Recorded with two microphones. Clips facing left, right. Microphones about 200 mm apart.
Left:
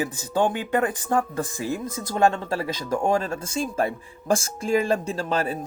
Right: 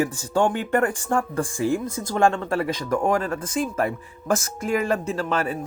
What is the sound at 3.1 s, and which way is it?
Speech, 25° left (ahead or behind).